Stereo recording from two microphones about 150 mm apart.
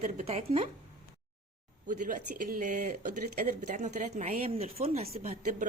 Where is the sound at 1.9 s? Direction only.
60° right (ahead or behind); by 5.0 s 40° right (ahead or behind).